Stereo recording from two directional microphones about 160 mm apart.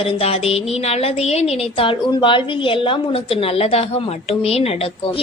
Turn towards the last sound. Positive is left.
turn(degrees=35)  # may be behind; listen again after turning